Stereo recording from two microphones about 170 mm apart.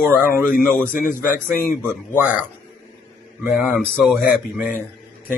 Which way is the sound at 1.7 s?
15° right (ahead or behind).